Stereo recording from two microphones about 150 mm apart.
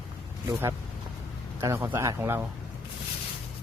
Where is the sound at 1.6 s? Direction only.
20° right (ahead or behind).